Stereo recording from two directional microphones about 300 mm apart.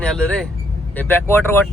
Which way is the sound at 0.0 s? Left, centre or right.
Centre.